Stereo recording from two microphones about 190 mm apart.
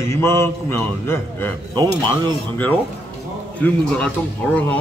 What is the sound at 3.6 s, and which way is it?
A man's voice, 5° left (ahead or behind).